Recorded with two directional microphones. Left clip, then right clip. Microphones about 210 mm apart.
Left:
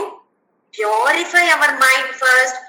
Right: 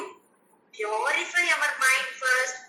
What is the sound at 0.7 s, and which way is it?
A woman's voice, 50° left (ahead or behind).